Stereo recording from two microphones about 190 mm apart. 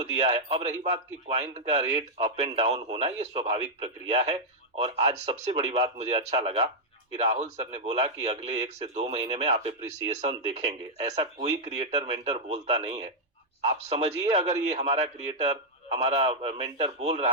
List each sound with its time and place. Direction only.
0.2 s a man's voice: 30° right (ahead or behind)